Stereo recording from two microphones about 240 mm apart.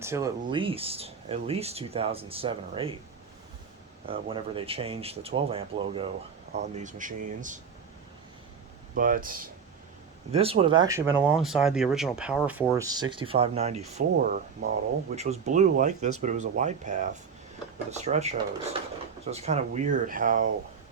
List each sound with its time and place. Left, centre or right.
0.0 s speech: centre
4.0 s speech: right
9.0 s speech: right
10.3 s speech: right; by 12.4 s centre
12.7 s speech: centre; by 20.5 s right